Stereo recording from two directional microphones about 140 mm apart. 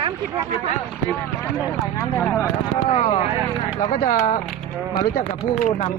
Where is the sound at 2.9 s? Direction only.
50° left (ahead or behind).